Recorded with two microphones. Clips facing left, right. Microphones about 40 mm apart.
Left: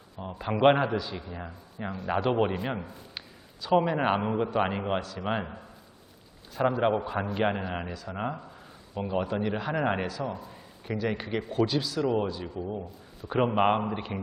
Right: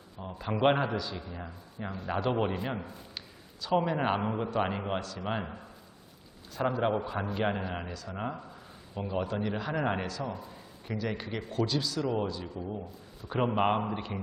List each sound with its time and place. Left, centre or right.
0.2 s a man's voice: centre
6.6 s a man's voice: centre